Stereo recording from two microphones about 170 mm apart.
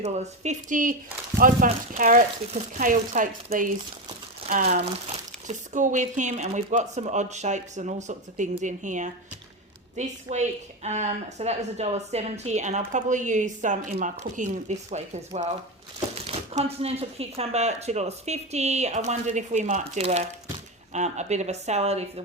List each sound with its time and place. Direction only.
0.0 s speech: 40° right (ahead or behind)
4.7 s speech: 40° right (ahead or behind)